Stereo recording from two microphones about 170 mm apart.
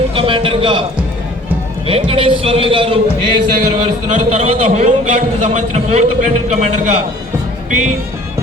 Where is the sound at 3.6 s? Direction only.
45° right (ahead or behind).